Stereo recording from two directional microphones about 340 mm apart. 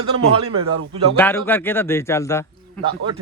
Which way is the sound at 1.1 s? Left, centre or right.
Centre.